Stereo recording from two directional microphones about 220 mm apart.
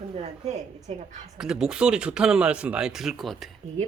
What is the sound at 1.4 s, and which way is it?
Speech, centre (ahead or behind).